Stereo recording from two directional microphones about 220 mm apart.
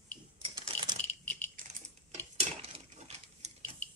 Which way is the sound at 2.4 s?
30° right (ahead or behind).